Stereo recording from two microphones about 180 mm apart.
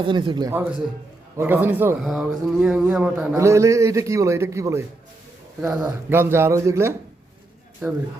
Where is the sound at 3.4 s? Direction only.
15° right (ahead or behind).